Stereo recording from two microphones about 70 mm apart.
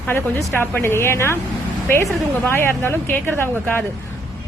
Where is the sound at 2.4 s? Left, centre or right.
Left.